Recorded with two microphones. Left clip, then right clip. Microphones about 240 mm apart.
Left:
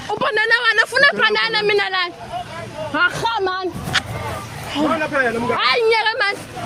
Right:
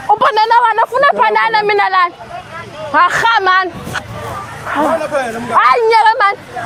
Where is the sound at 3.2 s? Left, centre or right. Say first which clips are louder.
Right 10 dB; right.